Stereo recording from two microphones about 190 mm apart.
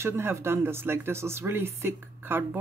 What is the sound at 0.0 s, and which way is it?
Speech, 15° right (ahead or behind).